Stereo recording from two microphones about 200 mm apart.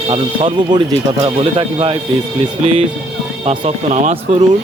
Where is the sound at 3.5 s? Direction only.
35° right (ahead or behind).